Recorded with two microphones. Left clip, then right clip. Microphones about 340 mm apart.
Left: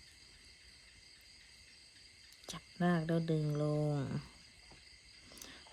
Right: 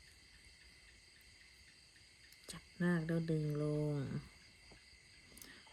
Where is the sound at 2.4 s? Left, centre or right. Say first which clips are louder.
Left 4 dB; centre.